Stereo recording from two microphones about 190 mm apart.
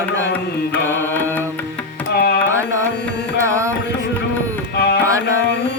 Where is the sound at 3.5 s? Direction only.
15° right (ahead or behind).